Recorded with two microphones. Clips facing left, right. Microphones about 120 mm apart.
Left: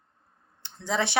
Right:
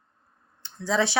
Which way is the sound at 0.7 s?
20° left (ahead or behind).